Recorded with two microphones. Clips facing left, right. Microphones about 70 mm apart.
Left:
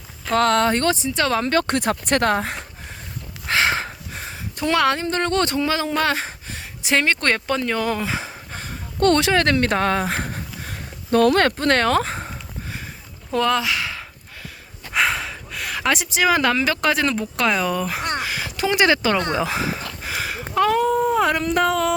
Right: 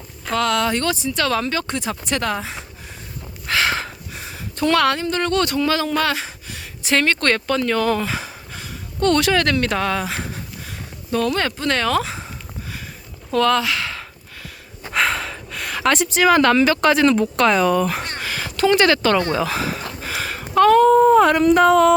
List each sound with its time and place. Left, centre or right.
0.3 s speech: left
1.0 s speech: left
1.5 s speech: left
3.4 s a sound: left
4.5 s a woman's voice: centre
4.9 s speech: left
6.0 s a sound: left
6.8 s speech: centre
8.5 s a sound: left
9.2 s speech: left
11.5 s speech: left
13.3 s speech: centre
14.9 s speech: centre
20.0 s a sound: centre